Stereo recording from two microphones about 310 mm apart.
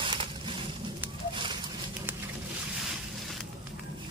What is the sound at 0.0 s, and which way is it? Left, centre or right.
Crushing, centre.